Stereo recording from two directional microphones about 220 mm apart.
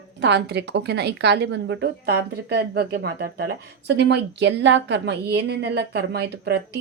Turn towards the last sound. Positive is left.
turn(degrees=-45)  # may be behind; listen again after turning